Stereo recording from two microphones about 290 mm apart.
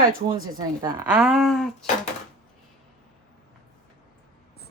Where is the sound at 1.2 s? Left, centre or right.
Centre.